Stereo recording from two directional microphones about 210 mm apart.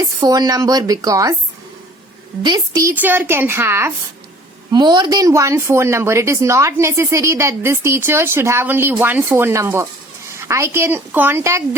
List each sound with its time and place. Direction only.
0.0 s speech: 15° right (ahead or behind)
2.4 s a woman's voice: 20° right (ahead or behind)
2.9 s speech: 10° right (ahead or behind)